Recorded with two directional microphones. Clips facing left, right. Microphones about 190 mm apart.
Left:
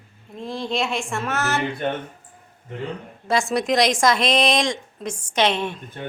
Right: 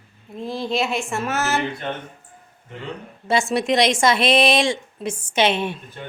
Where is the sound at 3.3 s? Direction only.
Centre (ahead or behind).